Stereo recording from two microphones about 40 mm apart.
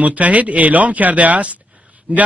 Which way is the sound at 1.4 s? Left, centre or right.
Right.